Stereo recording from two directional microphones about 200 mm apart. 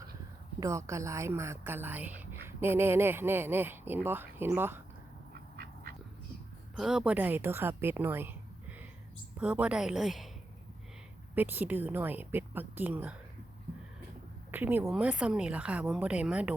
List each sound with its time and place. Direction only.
0.6 s a woman's voice: 15° right (ahead or behind)
5.3 s duck: 50° right (ahead or behind)
6.7 s a woman's voice: 5° right (ahead or behind)
11.3 s a woman's voice: 10° right (ahead or behind)
14.5 s a woman's voice: 10° right (ahead or behind)